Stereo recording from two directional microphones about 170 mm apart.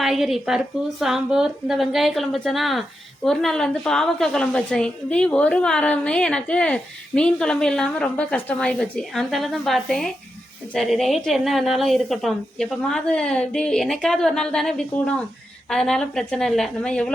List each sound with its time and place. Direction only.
0.0 s a woman's voice: centre (ahead or behind)